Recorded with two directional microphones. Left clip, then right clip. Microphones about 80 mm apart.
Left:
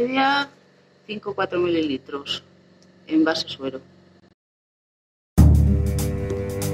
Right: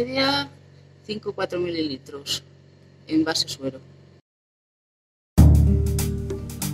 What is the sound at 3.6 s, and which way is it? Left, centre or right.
Speech, left.